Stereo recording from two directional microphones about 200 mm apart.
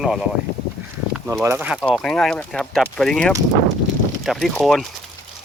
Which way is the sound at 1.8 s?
Centre (ahead or behind).